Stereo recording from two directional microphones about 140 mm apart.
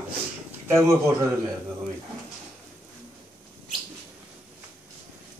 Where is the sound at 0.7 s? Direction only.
20° right (ahead or behind).